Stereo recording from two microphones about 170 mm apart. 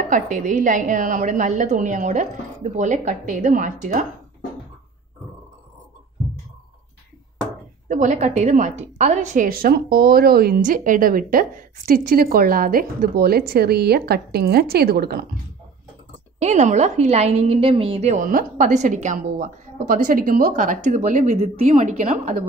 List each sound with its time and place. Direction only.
0.1 s a woman's voice: 50° right (ahead or behind)
7.9 s a woman's voice: 45° right (ahead or behind); by 15.2 s 65° right (ahead or behind)
16.3 s a woman's voice: 40° right (ahead or behind)